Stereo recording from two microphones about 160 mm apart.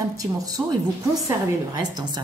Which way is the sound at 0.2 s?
20° right (ahead or behind).